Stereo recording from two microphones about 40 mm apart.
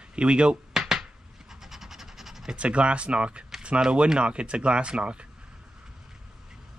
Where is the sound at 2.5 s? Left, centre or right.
Right.